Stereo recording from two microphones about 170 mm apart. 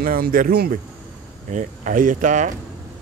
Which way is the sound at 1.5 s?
50° right (ahead or behind).